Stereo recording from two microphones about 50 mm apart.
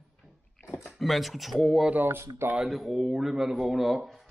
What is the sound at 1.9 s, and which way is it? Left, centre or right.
Speech, right.